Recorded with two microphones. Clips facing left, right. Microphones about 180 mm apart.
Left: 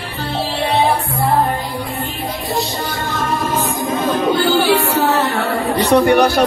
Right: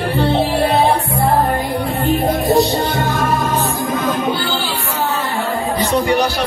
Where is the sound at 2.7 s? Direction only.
30° right (ahead or behind).